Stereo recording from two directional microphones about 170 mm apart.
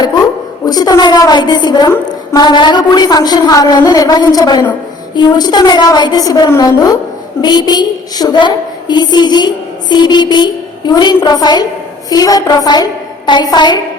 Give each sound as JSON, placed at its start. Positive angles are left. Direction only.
{"t": 0.6, "sound": "a woman's voice", "side_deg": 25}